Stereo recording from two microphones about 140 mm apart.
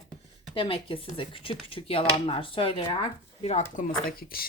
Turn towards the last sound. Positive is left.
turn(degrees=90)